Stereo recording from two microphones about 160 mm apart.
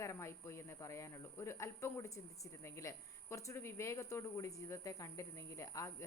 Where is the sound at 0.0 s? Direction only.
15° left (ahead or behind).